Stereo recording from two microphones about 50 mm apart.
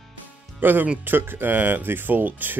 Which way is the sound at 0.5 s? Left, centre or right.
Right.